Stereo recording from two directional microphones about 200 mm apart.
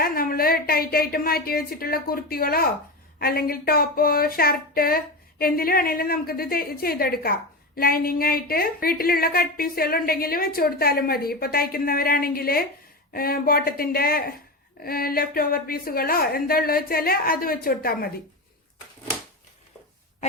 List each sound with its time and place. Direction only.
0.0 s a woman's voice: 45° left (ahead or behind)